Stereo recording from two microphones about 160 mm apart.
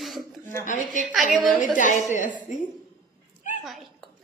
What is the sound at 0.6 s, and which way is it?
A woman's voice, 50° left (ahead or behind).